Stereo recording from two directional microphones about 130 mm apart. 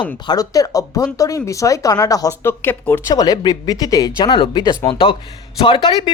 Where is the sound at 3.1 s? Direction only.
30° left (ahead or behind).